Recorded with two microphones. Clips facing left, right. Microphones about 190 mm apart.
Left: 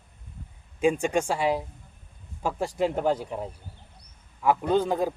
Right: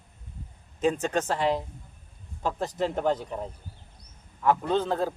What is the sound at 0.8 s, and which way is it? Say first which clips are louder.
Speech: left 2 dB; 10° left (ahead or behind).